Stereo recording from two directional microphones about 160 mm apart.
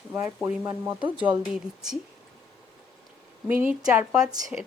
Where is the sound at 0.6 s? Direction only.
20° right (ahead or behind).